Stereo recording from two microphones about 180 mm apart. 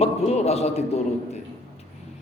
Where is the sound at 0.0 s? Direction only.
35° left (ahead or behind).